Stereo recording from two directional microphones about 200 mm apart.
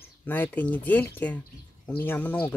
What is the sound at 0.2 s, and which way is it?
Speech, 10° left (ahead or behind).